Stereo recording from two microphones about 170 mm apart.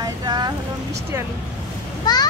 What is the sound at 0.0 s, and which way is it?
Vehicle, 25° right (ahead or behind).